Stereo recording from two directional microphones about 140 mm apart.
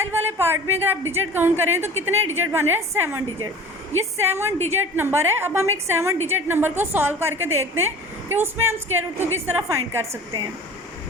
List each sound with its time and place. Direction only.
0.0 s a woman's voice: 15° right (ahead or behind)